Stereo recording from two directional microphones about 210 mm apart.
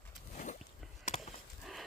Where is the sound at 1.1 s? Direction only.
30° left (ahead or behind).